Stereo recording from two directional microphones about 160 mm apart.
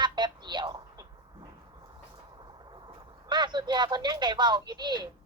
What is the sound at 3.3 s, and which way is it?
Speech, 30° right (ahead or behind).